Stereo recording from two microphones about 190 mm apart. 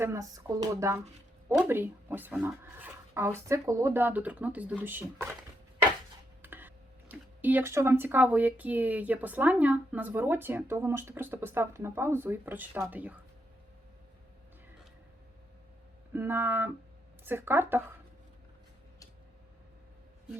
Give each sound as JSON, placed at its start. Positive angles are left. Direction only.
{"t": 0.0, "sound": "speech", "side_deg": -15}
{"t": 6.4, "sound": "speech", "side_deg": -10}
{"t": 16.1, "sound": "speech", "side_deg": -10}